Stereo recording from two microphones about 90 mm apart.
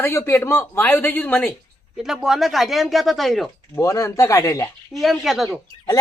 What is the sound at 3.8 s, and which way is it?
Speech, 35° left (ahead or behind).